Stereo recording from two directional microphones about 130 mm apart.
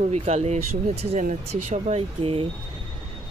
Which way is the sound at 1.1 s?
70° right (ahead or behind).